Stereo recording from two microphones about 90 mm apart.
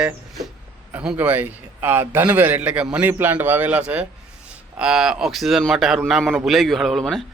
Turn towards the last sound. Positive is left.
turn(degrees=5)  # may be behind; listen again after turning